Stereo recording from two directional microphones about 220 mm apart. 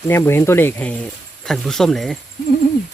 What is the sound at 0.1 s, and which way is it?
Speech, 10° left (ahead or behind).